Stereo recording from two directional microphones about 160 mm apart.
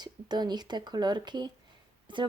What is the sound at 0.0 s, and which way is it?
Speech, 25° right (ahead or behind).